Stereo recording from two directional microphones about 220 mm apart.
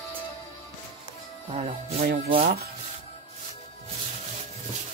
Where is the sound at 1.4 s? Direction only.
30° right (ahead or behind).